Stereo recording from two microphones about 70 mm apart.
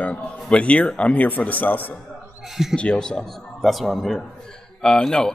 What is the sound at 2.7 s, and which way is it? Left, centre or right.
Speech, centre.